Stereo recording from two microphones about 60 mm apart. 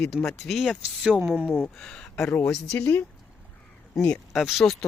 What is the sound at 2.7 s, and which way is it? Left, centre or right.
Speech, left.